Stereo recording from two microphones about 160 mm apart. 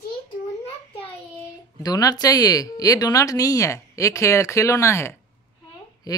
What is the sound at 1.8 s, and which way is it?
Speech, 25° left (ahead or behind).